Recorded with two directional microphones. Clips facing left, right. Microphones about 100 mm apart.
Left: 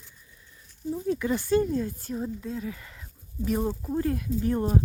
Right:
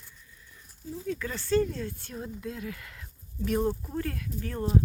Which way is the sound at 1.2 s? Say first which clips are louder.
Left 1 dB; 15° left (ahead or behind).